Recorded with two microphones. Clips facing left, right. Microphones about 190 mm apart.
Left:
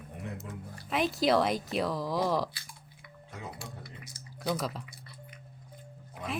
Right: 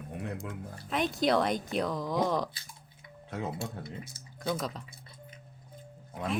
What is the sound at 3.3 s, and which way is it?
Speech, 65° right (ahead or behind).